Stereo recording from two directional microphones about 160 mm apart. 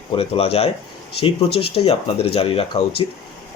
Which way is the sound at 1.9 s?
35° left (ahead or behind).